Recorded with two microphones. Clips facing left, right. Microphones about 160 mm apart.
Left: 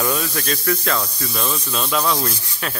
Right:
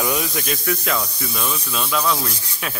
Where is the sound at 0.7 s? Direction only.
5° right (ahead or behind).